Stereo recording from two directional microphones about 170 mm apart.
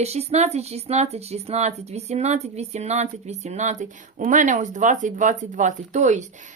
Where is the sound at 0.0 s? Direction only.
40° right (ahead or behind).